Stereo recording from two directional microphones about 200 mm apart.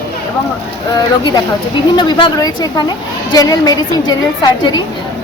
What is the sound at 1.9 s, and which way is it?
A woman's voice, 20° left (ahead or behind).